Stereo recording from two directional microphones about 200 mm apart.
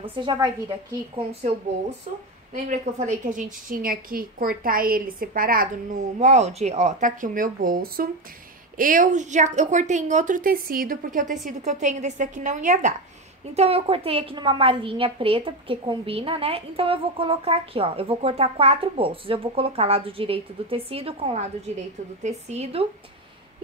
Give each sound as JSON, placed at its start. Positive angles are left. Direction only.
{"t": 0.0, "sound": "a woman's voice", "side_deg": -25}
{"t": 3.1, "sound": "a woman's voice", "side_deg": -40}
{"t": 6.1, "sound": "a woman's voice", "side_deg": -35}